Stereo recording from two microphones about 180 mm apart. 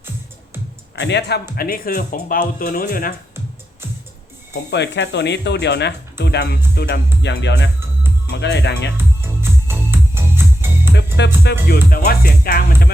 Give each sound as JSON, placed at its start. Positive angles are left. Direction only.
{"t": 0.9, "sound": "speech", "side_deg": 75}
{"t": 1.5, "sound": "speech", "side_deg": 55}
{"t": 4.7, "sound": "speech", "side_deg": 70}
{"t": 9.0, "sound": "music", "side_deg": -15}
{"t": 11.2, "sound": "speech", "side_deg": 75}
{"t": 11.7, "sound": "speech", "side_deg": 55}